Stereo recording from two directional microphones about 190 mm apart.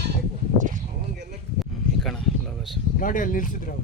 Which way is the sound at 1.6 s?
Centre (ahead or behind).